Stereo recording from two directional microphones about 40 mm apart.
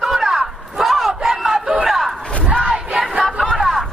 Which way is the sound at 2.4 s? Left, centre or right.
Right.